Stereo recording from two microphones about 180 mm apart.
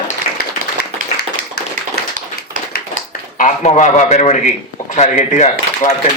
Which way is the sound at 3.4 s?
40° left (ahead or behind).